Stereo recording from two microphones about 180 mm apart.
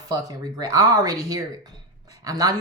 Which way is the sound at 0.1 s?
20° right (ahead or behind).